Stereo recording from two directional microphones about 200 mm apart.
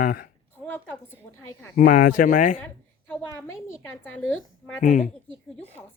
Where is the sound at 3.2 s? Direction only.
15° left (ahead or behind).